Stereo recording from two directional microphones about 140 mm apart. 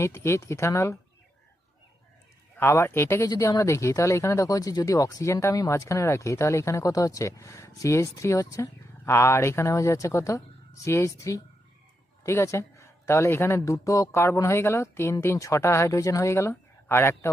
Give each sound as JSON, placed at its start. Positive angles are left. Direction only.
{"t": 0.0, "sound": "speech", "side_deg": 20}
{"t": 2.6, "sound": "speech", "side_deg": 20}